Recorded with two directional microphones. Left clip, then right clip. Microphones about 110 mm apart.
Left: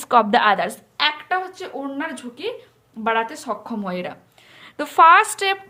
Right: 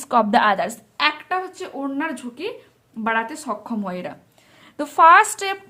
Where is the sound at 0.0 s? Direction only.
25° right (ahead or behind).